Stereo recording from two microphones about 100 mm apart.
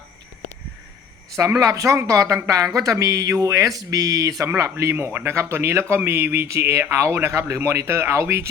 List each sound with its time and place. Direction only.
1.4 s speech: 30° right (ahead or behind)